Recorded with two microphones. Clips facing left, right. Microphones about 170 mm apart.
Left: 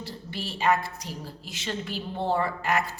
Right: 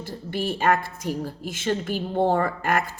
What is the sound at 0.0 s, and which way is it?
A woman's voice, 50° right (ahead or behind).